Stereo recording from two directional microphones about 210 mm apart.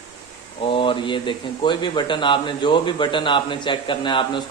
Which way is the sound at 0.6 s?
25° left (ahead or behind).